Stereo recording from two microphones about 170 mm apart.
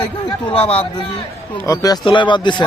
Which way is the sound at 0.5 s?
35° left (ahead or behind).